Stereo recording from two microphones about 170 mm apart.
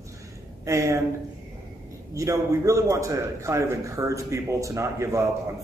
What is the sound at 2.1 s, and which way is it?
A man's voice, 20° right (ahead or behind).